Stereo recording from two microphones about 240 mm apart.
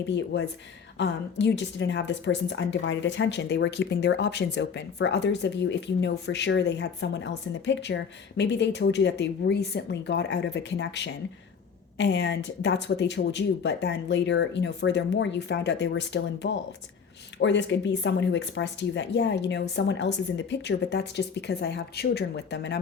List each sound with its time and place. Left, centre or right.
0.3 s a woman's voice: left